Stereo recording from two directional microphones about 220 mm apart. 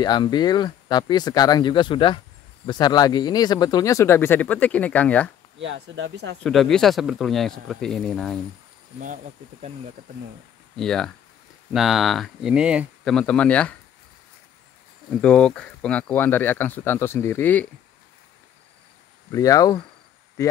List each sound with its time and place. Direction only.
0.0 s speech: 20° left (ahead or behind)
5.6 s speech: 55° right (ahead or behind)
6.4 s speech: centre (ahead or behind)
9.0 s speech: 35° right (ahead or behind)
10.8 s speech: 5° left (ahead or behind)
15.0 s speech: 5° left (ahead or behind)
19.3 s speech: 15° left (ahead or behind)